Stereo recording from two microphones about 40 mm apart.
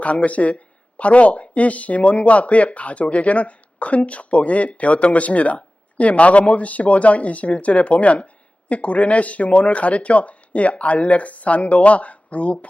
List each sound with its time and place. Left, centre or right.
0.0 s speech: left